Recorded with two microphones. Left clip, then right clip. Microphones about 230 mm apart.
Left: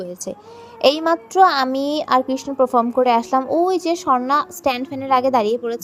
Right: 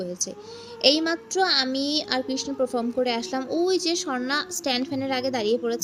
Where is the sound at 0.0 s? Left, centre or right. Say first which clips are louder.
Left 2 dB; left.